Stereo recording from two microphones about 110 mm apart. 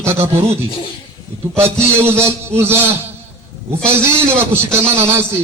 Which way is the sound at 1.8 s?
20° right (ahead or behind).